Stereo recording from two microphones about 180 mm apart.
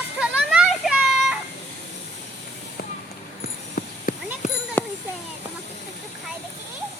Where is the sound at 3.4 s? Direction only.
50° left (ahead or behind).